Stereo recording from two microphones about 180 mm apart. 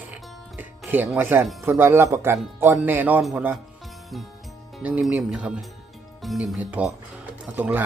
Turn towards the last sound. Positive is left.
turn(degrees=-10)  # may be behind; listen again after turning